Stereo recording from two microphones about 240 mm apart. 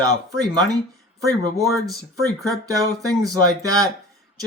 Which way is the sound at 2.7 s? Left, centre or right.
Centre.